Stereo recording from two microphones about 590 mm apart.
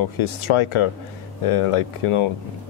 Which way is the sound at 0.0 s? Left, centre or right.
Left.